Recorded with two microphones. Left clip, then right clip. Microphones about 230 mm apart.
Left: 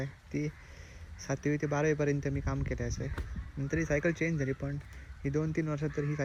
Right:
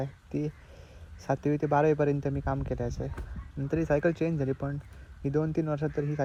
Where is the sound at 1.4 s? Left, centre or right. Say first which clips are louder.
Right 5 dB; right.